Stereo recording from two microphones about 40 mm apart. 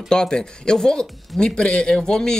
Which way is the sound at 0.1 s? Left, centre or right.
Centre.